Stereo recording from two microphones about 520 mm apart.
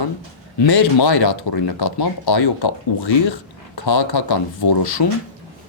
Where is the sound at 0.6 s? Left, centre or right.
Left.